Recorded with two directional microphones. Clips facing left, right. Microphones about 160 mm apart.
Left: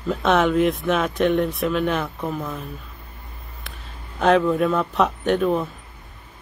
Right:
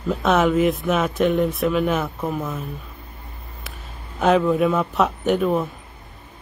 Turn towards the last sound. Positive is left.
turn(degrees=-5)  # may be behind; listen again after turning